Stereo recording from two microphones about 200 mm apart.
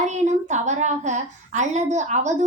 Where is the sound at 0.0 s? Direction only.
35° right (ahead or behind).